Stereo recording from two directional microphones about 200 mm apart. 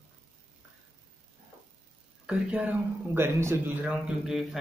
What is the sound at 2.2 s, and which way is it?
A man's voice, 5° right (ahead or behind).